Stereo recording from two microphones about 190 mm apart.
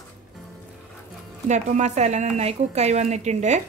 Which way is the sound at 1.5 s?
40° right (ahead or behind).